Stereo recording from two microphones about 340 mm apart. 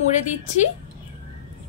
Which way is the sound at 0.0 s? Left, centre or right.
Left.